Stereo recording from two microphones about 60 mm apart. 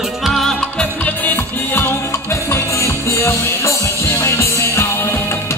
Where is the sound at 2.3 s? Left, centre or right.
Left.